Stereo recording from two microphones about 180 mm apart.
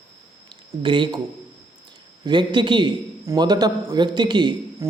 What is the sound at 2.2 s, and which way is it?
A man's voice, 25° right (ahead or behind).